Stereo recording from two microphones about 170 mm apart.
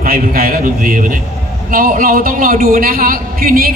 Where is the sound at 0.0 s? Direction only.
60° right (ahead or behind).